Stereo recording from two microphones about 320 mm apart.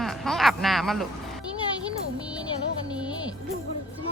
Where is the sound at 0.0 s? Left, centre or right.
Centre.